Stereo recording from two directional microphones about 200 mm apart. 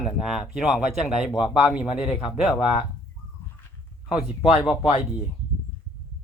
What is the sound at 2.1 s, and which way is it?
Speech, 25° left (ahead or behind).